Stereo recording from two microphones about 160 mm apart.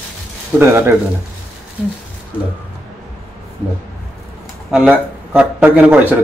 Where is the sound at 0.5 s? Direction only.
15° right (ahead or behind).